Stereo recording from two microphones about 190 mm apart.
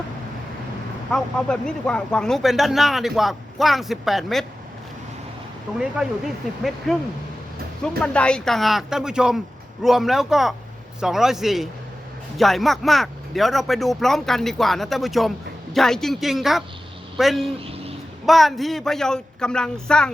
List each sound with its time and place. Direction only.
1.1 s speech: 5° left (ahead or behind)
5.8 s speech: centre (ahead or behind)
7.9 s speech: 5° left (ahead or behind)
17.6 s a sound: 30° right (ahead or behind)
18.3 s speech: centre (ahead or behind)